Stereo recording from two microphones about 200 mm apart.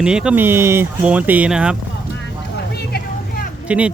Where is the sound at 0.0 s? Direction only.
5° right (ahead or behind).